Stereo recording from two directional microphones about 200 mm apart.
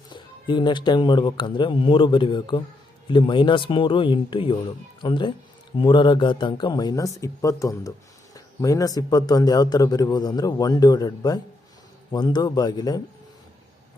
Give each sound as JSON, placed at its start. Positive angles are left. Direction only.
{"t": 0.1, "sound": "a man's voice", "side_deg": 25}